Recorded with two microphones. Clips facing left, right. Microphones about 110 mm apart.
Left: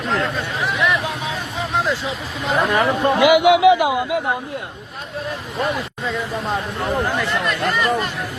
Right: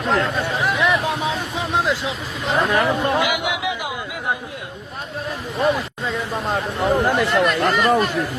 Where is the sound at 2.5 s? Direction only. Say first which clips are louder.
Even; centre (ahead or behind).